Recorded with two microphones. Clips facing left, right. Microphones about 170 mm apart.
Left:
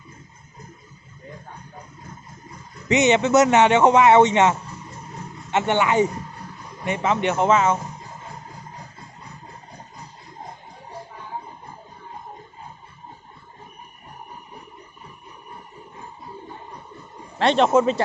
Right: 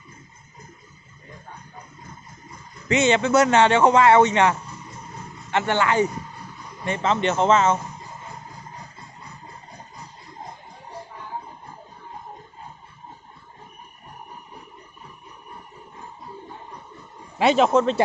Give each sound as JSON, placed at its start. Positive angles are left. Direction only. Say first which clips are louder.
{"t": 2.9, "sound": "a man's voice", "louder": "left 2 dB", "side_deg": 20}
{"t": 17.3, "sound": "speech", "louder": "even", "side_deg": -5}